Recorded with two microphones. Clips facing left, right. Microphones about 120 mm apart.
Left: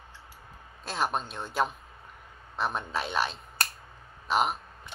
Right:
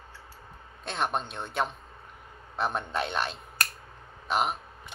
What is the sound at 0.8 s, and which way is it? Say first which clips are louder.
A man's voice: even; centre (ahead or behind).